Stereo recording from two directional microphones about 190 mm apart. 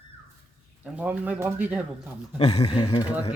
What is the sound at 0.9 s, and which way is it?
Speech, 10° right (ahead or behind).